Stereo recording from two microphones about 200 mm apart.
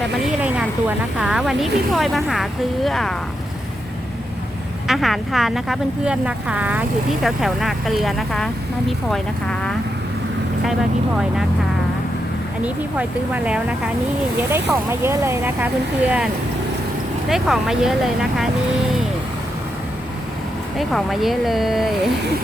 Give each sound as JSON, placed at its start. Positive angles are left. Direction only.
{"t": 0.4, "sound": "a woman's voice", "side_deg": -5}
{"t": 4.9, "sound": "a woman's voice", "side_deg": 0}
{"t": 12.6, "sound": "a woman's voice", "side_deg": -5}
{"t": 20.7, "sound": "a woman's voice", "side_deg": 0}